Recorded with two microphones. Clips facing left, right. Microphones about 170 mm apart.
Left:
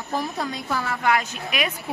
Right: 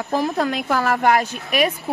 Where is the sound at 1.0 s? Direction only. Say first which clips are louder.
Right 5 dB; 40° right (ahead or behind).